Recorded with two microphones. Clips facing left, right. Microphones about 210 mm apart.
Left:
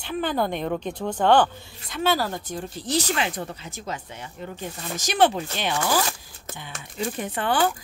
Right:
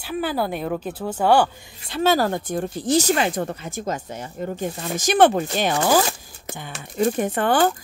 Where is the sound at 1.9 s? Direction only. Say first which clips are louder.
Right 5 dB; 45° right (ahead or behind).